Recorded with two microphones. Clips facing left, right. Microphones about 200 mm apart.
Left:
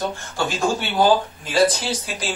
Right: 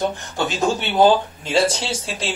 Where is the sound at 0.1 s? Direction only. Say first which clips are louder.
Right 1 dB; 20° right (ahead or behind).